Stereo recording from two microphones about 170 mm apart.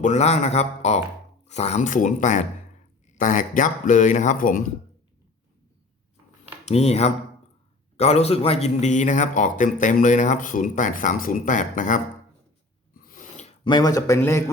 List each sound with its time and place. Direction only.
0.0 s speech: 40° left (ahead or behind)
6.7 s speech: 40° left (ahead or behind)
13.0 s a sound: 55° left (ahead or behind)
13.7 s a man's voice: 25° left (ahead or behind)